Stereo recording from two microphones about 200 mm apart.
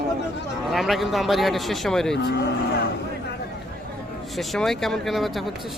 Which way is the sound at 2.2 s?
55° left (ahead or behind).